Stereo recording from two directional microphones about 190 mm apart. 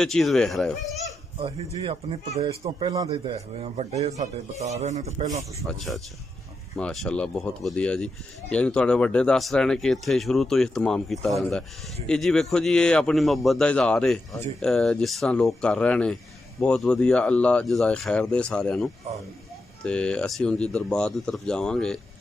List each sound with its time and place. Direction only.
0.0 s a man's voice: centre (ahead or behind)
1.4 s speech: 30° right (ahead or behind)
5.6 s a man's voice: centre (ahead or behind)